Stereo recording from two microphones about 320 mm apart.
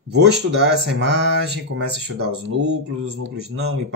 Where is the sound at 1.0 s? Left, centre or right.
Right.